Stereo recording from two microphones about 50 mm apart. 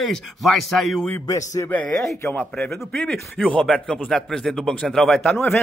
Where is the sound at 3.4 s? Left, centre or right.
Left.